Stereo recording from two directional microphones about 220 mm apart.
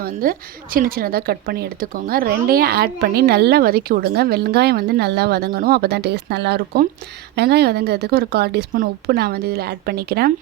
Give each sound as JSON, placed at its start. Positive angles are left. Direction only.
{"t": 0.0, "sound": "a woman's voice", "side_deg": -40}